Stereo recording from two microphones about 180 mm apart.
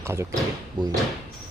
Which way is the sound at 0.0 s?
15° right (ahead or behind).